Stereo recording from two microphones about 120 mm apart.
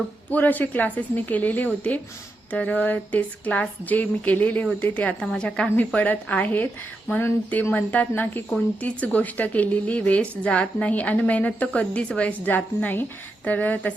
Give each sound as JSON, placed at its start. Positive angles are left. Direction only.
{"t": 0.3, "sound": "a woman's voice", "side_deg": 15}